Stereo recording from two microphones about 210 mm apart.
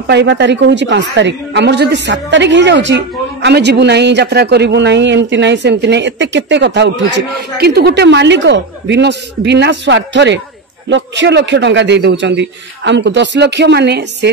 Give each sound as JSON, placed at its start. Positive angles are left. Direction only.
{"t": 0.0, "sound": "a man's voice", "side_deg": -55}